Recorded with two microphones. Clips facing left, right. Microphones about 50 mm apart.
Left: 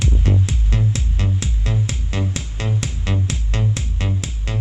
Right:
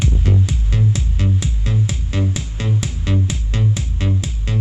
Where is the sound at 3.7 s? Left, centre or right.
Left.